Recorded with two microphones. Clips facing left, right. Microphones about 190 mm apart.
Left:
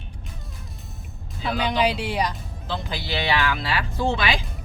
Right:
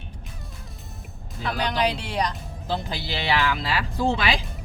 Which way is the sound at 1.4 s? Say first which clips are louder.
Left 2 dB; 5° left (ahead or behind).